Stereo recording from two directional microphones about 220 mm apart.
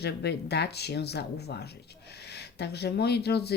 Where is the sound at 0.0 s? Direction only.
50° left (ahead or behind).